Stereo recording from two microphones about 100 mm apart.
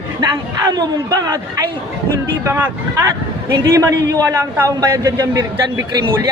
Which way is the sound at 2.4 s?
25° right (ahead or behind).